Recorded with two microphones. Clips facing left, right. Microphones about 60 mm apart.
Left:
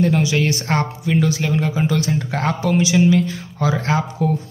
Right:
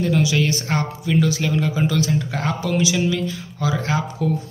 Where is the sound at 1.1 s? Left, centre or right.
Left.